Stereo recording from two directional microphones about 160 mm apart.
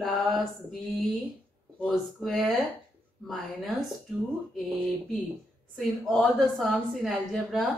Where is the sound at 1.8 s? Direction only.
Centre (ahead or behind).